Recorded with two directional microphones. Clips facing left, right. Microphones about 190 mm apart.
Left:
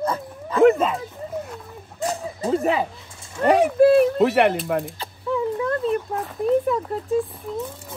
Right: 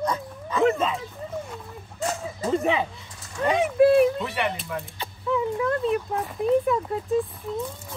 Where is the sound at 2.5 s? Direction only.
Centre (ahead or behind).